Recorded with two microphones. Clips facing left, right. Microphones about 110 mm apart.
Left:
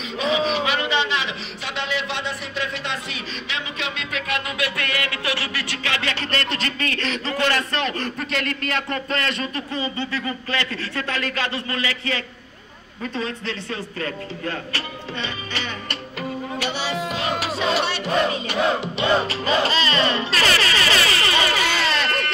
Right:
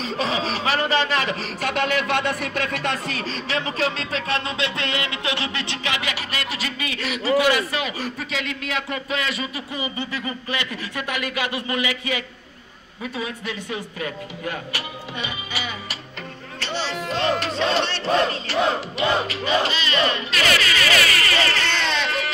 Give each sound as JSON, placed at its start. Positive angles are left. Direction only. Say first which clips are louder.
{"t": 0.2, "sound": "speech", "louder": "left 4 dB", "side_deg": -35}
{"t": 15.2, "sound": "music", "louder": "even", "side_deg": -10}
{"t": 16.5, "sound": "battle cry", "louder": "even", "side_deg": 10}
{"t": 18.9, "sound": "speech", "louder": "left 2 dB", "side_deg": 35}